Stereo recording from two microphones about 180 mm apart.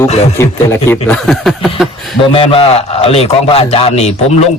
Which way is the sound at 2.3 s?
30° left (ahead or behind).